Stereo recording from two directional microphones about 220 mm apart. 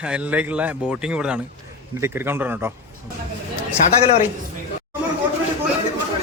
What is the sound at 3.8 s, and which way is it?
Speech, 35° left (ahead or behind).